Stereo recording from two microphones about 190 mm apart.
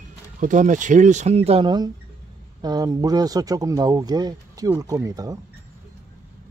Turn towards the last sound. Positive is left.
turn(degrees=-20)  # may be behind; listen again after turning